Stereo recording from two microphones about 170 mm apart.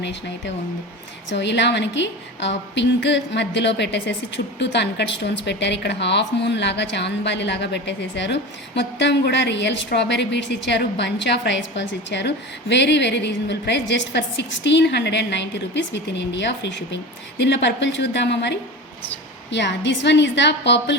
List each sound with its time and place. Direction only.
1.3 s a woman's voice: 90° left